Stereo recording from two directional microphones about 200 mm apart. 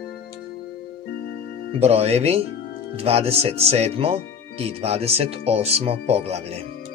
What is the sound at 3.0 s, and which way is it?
Speech, 30° right (ahead or behind).